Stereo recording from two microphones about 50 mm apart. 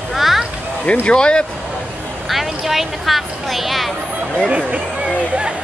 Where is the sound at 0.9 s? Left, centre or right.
Centre.